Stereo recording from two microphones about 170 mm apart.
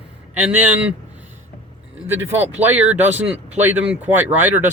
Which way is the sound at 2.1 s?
10° right (ahead or behind).